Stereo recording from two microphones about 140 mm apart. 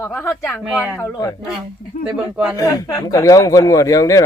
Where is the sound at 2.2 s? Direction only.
15° right (ahead or behind).